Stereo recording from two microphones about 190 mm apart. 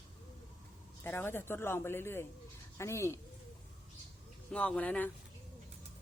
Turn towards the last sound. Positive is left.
turn(degrees=10)  # may be behind; listen again after turning